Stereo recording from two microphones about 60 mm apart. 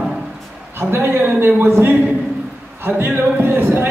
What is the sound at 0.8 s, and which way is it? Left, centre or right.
A man's voice, right.